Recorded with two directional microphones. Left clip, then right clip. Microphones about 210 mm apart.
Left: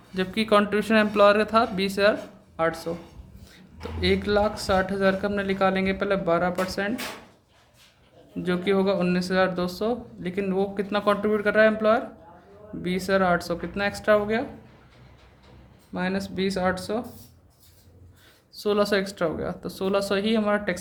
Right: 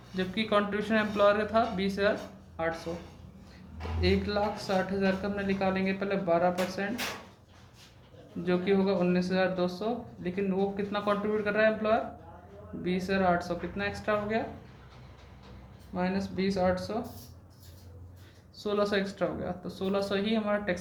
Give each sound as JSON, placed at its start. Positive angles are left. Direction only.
{"t": 0.2, "sound": "speech", "side_deg": 50}
{"t": 8.4, "sound": "speech", "side_deg": 50}
{"t": 16.0, "sound": "speech", "side_deg": 50}
{"t": 18.5, "sound": "speech", "side_deg": 50}